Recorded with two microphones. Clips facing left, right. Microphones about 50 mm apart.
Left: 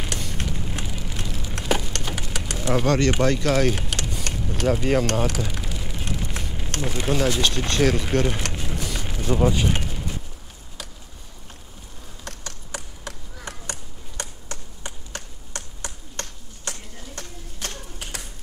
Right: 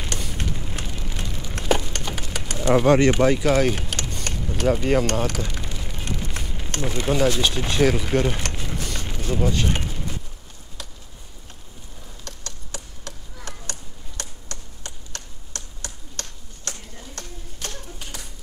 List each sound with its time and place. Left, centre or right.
0.0 s a sound: centre
2.7 s speech: centre
3.1 s vehicle: centre
7.4 s speech: centre
12.3 s chop: centre
14.5 s finger snapping: centre
17.6 s a sound: left